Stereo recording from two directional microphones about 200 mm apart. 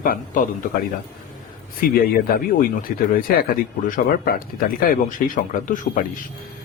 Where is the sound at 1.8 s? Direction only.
50° left (ahead or behind).